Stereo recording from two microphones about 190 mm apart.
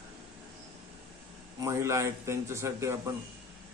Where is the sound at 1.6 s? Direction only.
15° right (ahead or behind).